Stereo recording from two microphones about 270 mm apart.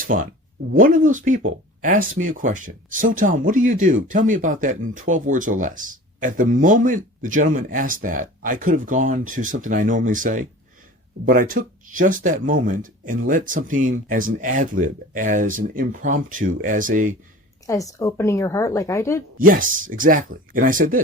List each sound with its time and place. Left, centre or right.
0.0 s speech: right
17.7 s a woman's voice: centre
19.5 s speech: right